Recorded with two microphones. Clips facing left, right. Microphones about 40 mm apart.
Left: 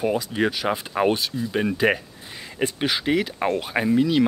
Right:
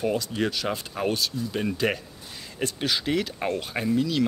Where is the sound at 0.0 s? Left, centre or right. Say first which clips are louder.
Left 3 dB; centre.